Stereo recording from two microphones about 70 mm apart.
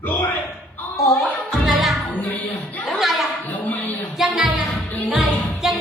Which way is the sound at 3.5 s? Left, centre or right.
Left.